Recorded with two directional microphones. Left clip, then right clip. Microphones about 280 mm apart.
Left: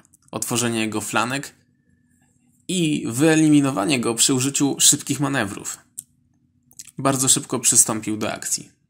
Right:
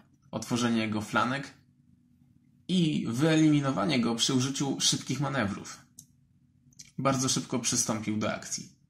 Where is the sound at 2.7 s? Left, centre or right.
Left.